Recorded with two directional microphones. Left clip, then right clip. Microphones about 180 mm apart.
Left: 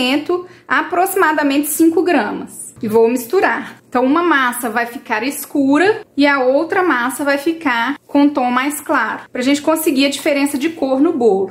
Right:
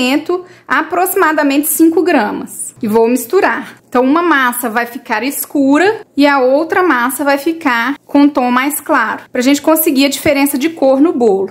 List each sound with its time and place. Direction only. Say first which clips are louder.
0.0 s a woman's voice: right 2 dB; 30° right (ahead or behind)